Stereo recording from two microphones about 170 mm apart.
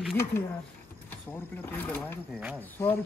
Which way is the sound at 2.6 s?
10° left (ahead or behind).